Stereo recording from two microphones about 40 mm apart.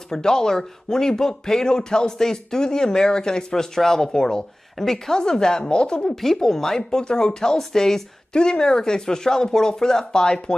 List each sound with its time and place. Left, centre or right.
0.1 s speech: centre
6.0 s speech: centre